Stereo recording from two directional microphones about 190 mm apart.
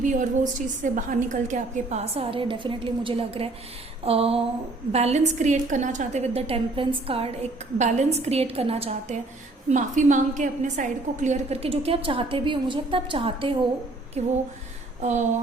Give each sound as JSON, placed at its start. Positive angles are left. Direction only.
{"t": 0.0, "sound": "a woman's voice", "side_deg": -40}